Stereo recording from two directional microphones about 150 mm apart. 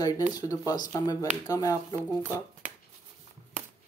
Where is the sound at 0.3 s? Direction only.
25° left (ahead or behind).